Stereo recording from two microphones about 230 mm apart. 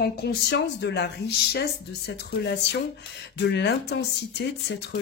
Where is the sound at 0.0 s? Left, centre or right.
Left.